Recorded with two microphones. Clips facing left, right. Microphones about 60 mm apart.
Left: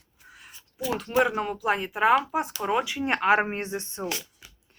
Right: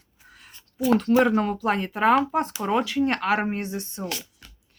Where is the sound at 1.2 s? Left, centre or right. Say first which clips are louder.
Right 3 dB; centre; by 4.2 s left.